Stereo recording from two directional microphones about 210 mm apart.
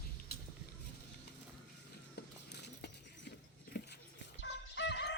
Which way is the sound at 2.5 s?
55° left (ahead or behind).